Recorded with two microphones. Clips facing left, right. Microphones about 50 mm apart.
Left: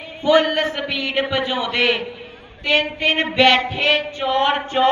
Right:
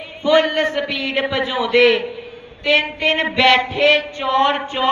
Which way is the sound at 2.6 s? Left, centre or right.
Right.